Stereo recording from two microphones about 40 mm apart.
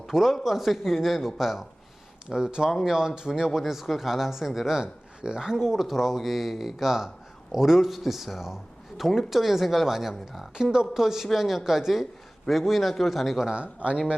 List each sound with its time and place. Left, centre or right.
0.1 s speech: centre
2.3 s speech: centre
3.6 s speech: centre
5.5 s speech: centre
13.5 s speech: right